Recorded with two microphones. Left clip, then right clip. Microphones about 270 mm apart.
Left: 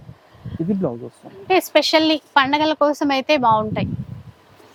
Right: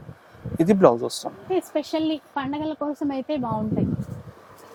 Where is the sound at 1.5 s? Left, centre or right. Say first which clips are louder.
Left 10 dB; centre.